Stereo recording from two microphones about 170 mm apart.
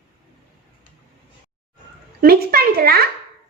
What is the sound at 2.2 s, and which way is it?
Speech, 60° right (ahead or behind).